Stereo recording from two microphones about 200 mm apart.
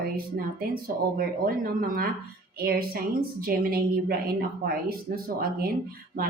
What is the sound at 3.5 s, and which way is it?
Speech, 50° right (ahead or behind).